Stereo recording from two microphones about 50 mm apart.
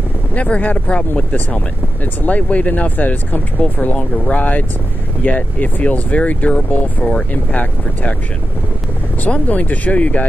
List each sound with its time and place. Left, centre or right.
0.3 s speech: left
9.2 s speech: left